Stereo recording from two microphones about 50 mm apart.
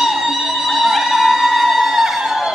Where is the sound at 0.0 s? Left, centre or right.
Centre.